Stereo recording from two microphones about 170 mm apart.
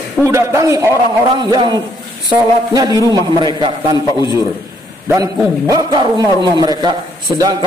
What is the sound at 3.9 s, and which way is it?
Speech, 25° left (ahead or behind).